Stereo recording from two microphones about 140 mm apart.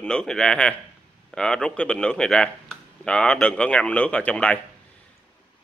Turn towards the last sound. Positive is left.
turn(degrees=10)  # may be behind; listen again after turning